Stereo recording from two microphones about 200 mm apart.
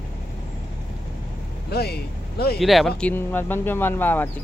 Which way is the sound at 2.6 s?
Centre (ahead or behind).